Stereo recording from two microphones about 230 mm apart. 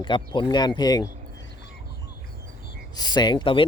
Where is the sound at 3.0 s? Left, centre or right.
Centre.